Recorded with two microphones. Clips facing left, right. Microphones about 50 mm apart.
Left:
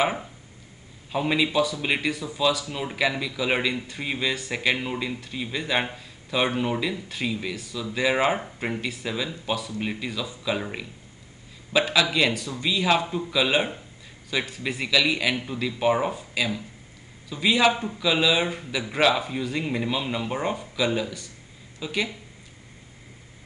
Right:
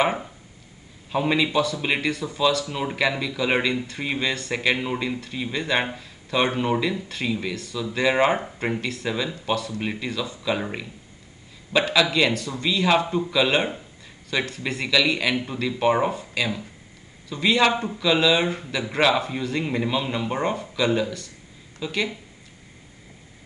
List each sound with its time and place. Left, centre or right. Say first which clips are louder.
1.1 s speech: right 2 dB; centre
4.8 s speech: right 3 dB; centre
11.7 s speech: right 2 dB; centre
15.3 s speech: right 3 dB; centre
15.6 s speech: right 2 dB; centre